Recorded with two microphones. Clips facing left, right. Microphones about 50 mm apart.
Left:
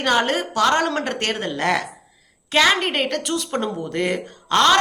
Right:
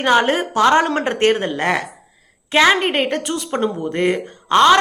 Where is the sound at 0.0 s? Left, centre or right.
Right.